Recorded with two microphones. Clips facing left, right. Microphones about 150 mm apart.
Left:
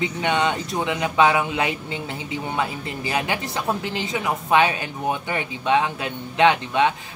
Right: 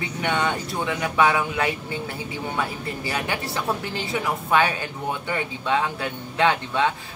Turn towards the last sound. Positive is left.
turn(degrees=20)  # may be behind; listen again after turning